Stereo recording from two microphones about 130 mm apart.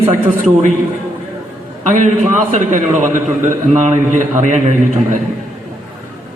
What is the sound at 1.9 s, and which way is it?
A man's voice, 70° right (ahead or behind).